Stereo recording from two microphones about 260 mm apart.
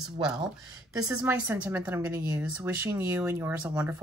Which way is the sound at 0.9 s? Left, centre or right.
Centre.